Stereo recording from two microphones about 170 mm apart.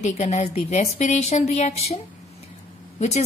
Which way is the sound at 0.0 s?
40° left (ahead or behind).